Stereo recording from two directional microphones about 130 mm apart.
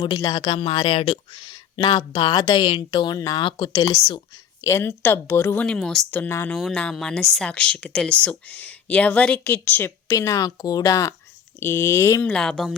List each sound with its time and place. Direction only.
0.2 s speech: 30° left (ahead or behind)
4.6 s speech: 20° left (ahead or behind)
5.6 s speech: 5° left (ahead or behind)
6.1 s speech: 15° left (ahead or behind)
6.6 s speech: 5° left (ahead or behind)
10.1 s speech: 25° left (ahead or behind)
12.2 s speech: 5° left (ahead or behind)